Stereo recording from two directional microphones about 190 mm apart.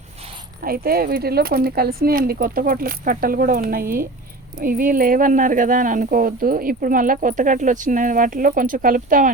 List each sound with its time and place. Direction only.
0.6 s speech: 50° right (ahead or behind)